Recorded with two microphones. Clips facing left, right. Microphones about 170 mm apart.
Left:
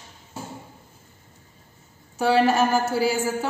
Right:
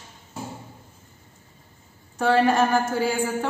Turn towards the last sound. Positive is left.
turn(degrees=5)  # may be behind; listen again after turning